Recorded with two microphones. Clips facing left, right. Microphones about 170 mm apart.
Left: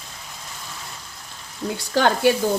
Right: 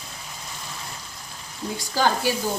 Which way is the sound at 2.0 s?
65° left (ahead or behind).